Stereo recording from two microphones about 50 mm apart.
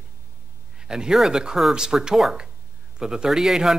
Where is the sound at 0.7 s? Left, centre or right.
Centre.